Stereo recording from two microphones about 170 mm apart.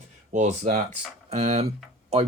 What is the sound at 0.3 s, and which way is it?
Speech, 45° right (ahead or behind).